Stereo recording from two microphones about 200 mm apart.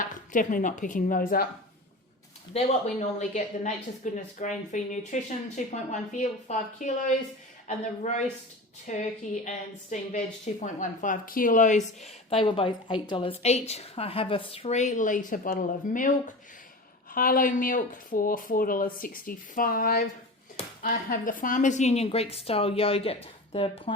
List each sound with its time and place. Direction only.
0.0 s speech: 40° left (ahead or behind)
2.5 s speech: 35° left (ahead or behind)
9.0 s speech: 35° left (ahead or behind)